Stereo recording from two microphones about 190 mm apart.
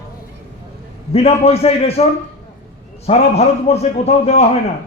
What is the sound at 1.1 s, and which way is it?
Speech, 30° left (ahead or behind).